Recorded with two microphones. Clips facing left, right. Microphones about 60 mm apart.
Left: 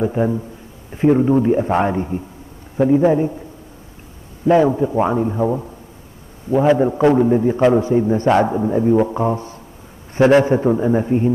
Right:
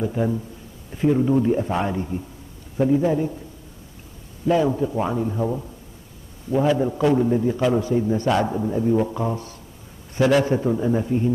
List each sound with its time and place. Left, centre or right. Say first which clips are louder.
0.0 s a man's voice: left 5 dB; left
4.6 s a man's voice: left 6 dB; left